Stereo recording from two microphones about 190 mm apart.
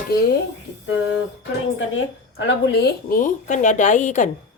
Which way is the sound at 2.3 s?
65° left (ahead or behind).